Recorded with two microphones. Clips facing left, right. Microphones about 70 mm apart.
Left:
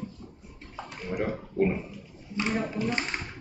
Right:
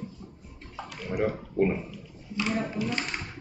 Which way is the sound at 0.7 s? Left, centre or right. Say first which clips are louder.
Right 2 dB; centre.